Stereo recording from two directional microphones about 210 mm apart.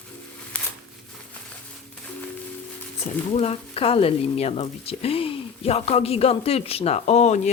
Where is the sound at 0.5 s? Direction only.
5° left (ahead or behind).